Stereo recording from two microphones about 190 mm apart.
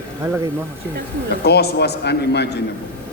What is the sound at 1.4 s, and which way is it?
A man's voice, 60° left (ahead or behind).